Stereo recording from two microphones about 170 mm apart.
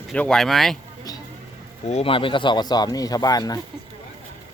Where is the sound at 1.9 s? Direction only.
35° left (ahead or behind).